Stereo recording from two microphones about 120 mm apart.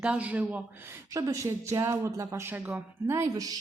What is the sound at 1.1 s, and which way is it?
Speech, 25° right (ahead or behind).